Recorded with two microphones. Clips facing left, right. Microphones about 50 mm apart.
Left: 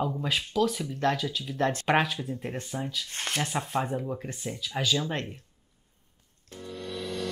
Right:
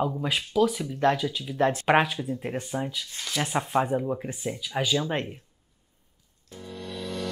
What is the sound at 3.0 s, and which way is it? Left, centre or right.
Speech, left.